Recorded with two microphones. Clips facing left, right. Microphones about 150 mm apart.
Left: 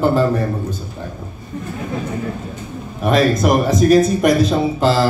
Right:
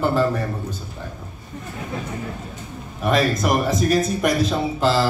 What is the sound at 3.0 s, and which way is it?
Speech, 25° left (ahead or behind).